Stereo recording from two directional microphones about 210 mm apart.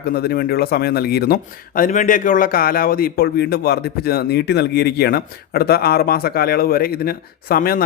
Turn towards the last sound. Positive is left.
turn(degrees=45)  # may be behind; listen again after turning